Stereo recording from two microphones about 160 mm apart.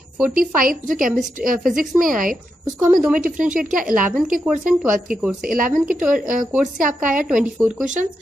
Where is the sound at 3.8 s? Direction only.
5° right (ahead or behind).